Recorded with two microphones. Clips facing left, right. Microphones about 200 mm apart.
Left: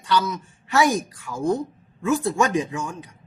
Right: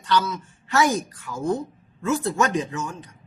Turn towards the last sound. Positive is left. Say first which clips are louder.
# left 1 dB
turn(degrees=10)  # may be behind; listen again after turning